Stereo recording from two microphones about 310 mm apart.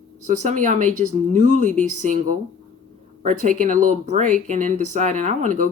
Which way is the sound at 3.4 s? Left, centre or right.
Right.